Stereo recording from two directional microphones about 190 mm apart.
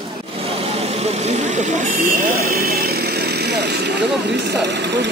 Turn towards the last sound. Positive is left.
turn(degrees=-65)  # may be behind; listen again after turning